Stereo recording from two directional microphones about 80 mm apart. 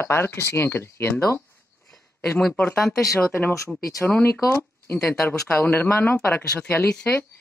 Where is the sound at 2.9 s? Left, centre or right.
Left.